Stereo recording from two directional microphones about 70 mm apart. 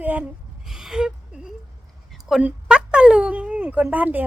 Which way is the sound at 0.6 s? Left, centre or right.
Centre.